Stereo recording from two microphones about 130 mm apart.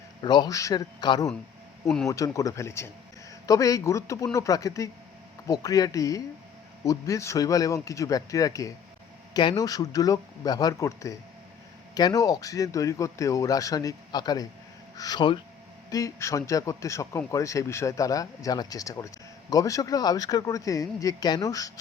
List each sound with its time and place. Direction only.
0.2 s speech: 35° left (ahead or behind)